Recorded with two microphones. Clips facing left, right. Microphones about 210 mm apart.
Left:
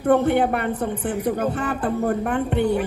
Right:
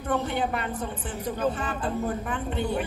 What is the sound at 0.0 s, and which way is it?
A man's voice, 55° left (ahead or behind).